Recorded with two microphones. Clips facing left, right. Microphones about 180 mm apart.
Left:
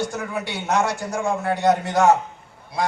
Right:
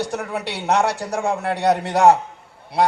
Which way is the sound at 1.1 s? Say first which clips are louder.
Left 1 dB; 70° right (ahead or behind).